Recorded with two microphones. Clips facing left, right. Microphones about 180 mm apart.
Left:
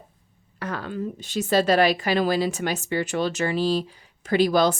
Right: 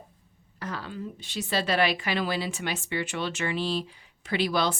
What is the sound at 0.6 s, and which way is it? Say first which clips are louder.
A woman's voice: left 6 dB; 55° left (ahead or behind).